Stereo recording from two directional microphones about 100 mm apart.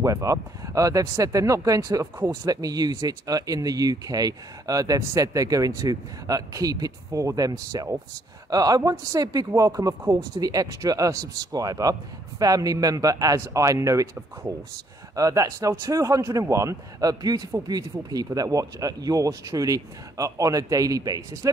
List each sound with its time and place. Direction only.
0.0 s speech: 35° right (ahead or behind)
15.1 s speech: 35° right (ahead or behind)